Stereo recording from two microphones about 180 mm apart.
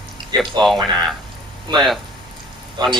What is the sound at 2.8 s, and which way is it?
Speech, 25° right (ahead or behind).